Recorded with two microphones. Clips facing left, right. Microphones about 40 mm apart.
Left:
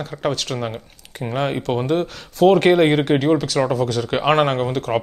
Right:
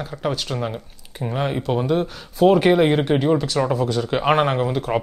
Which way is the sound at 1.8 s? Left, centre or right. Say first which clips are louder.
Left 1 dB; left.